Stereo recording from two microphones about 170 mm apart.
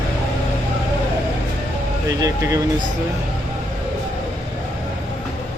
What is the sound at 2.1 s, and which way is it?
Speech, 20° right (ahead or behind).